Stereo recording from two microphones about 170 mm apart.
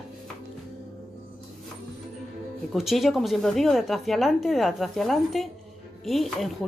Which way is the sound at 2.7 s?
Centre (ahead or behind).